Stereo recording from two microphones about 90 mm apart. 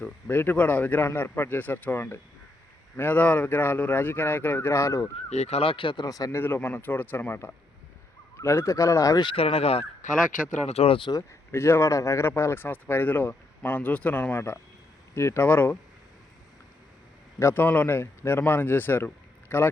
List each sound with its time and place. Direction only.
0.0 s speech: 20° left (ahead or behind)
5.5 s speech: 80° left
6.1 s speech: 40° left (ahead or behind)
6.3 s speech: 25° left (ahead or behind); by 9.2 s 40° left (ahead or behind)
9.2 s speech: 90° left
10.8 s speech: 75° left (ahead or behind)
11.5 s speech: 30° left (ahead or behind)
17.4 s speech: 20° left (ahead or behind)